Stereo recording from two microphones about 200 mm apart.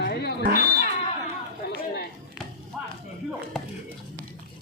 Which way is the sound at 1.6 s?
55° left (ahead or behind).